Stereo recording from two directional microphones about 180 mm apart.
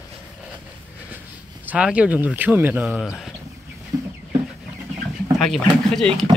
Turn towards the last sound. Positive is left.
turn(degrees=0)  # may be behind; listen again after turning